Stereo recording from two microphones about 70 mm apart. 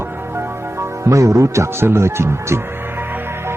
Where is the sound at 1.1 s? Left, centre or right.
Right.